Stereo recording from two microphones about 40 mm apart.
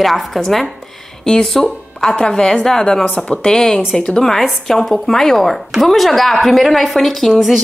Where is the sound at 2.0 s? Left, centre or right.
Centre.